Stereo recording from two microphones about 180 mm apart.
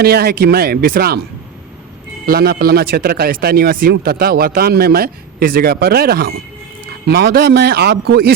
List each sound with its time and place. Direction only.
0.0 s speech: 60° right (ahead or behind)
2.2 s speech: 60° right (ahead or behind)